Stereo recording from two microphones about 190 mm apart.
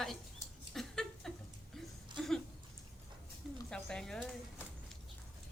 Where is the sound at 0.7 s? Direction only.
Centre (ahead or behind).